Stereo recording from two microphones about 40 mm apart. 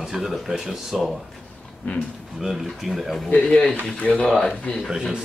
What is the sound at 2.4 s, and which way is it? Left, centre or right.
Speech, centre.